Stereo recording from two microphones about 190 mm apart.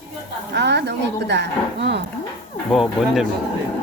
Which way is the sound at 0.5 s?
65° right (ahead or behind).